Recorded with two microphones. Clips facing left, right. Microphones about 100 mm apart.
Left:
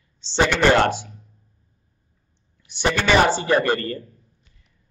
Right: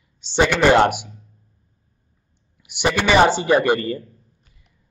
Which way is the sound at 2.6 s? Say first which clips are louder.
Right 2 dB; 15° right (ahead or behind).